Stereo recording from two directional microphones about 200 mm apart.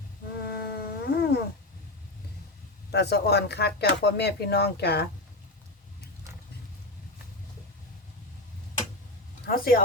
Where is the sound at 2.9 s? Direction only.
55° left (ahead or behind).